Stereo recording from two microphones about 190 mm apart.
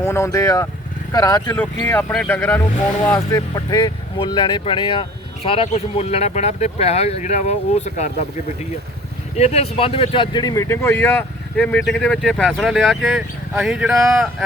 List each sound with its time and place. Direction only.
0.0 s speech: 15° left (ahead or behind); by 8.1 s 40° left (ahead or behind)
9.3 s speech: 35° left (ahead or behind); by 14.4 s centre (ahead or behind)